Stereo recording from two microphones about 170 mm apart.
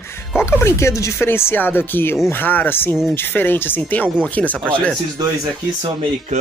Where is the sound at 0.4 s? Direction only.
15° left (ahead or behind).